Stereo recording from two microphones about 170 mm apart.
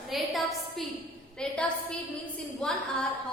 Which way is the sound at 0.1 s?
Centre (ahead or behind).